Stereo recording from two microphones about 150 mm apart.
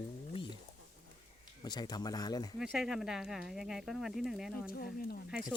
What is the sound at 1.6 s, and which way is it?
Speech, 30° left (ahead or behind).